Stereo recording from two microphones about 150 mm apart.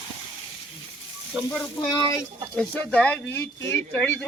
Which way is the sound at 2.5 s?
10° left (ahead or behind).